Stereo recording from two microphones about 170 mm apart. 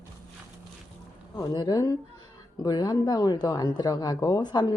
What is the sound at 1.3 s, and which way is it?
Speech, 25° left (ahead or behind).